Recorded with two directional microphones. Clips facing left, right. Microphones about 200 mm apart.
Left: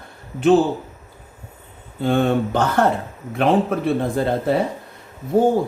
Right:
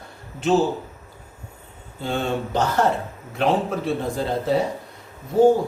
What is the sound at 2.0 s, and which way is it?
A man's voice, 55° left (ahead or behind).